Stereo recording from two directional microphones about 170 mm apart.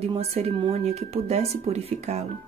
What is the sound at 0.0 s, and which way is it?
Speech, 40° right (ahead or behind).